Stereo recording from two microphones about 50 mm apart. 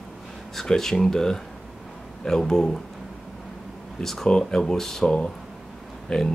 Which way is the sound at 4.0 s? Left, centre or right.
Centre.